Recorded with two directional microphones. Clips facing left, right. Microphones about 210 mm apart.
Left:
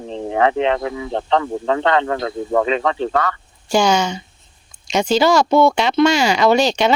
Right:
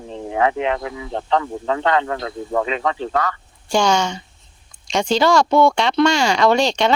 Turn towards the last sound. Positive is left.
turn(degrees=5)  # may be behind; listen again after turning